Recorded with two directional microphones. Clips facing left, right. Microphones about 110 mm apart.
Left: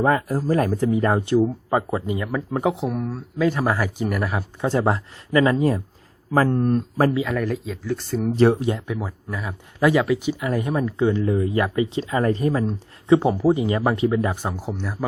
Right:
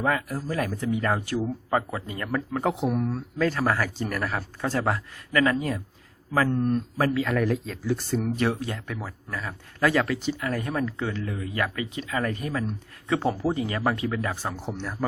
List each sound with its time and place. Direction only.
0.0 s speech: 35° left (ahead or behind)
2.1 s speech: 10° left (ahead or behind)
3.4 s speech: 15° left (ahead or behind); by 5.8 s 30° left (ahead or behind)
6.3 s speech: 45° left (ahead or behind)
7.3 s speech: centre (ahead or behind)
8.3 s speech: 30° left (ahead or behind)
8.6 s speech: 15° left (ahead or behind)
11.3 s speech: 30° left (ahead or behind)
14.6 s speech: 5° left (ahead or behind)